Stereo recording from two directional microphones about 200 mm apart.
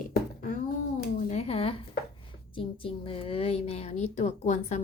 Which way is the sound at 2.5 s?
25° left (ahead or behind).